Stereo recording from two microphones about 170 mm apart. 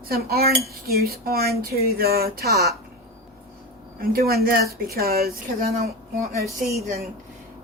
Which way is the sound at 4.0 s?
60° right (ahead or behind).